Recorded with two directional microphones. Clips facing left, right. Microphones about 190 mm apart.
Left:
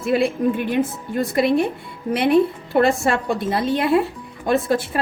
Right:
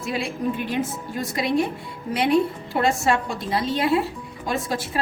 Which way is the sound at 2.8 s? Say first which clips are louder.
Right 1 dB; 55° left (ahead or behind).